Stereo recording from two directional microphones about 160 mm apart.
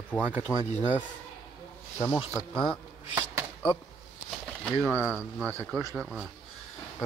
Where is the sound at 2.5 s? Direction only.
5° left (ahead or behind).